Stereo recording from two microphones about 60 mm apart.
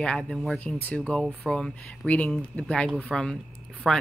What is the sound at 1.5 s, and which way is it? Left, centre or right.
Speech, centre.